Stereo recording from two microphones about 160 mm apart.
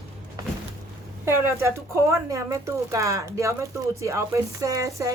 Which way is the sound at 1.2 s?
15° right (ahead or behind).